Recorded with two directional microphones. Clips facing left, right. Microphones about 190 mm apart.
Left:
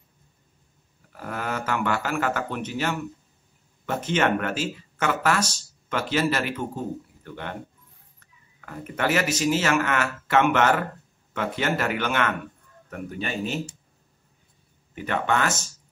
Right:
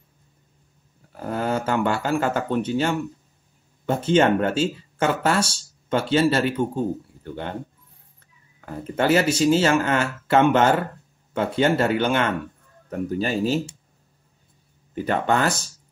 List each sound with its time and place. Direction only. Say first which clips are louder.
1.1 s speech: right 6 dB; 30° right (ahead or behind)
15.0 s speech: right 3 dB; 35° right (ahead or behind)